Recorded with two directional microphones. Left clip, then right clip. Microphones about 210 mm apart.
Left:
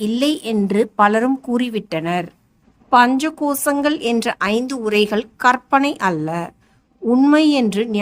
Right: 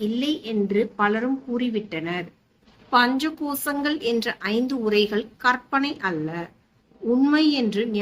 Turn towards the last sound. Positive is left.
turn(degrees=55)  # may be behind; listen again after turning